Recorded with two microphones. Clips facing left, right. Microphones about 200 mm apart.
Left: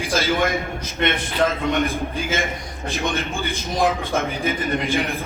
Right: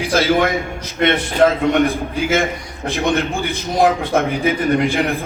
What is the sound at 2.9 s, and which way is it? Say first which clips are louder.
A man's voice: right 7 dB; 65° right (ahead or behind).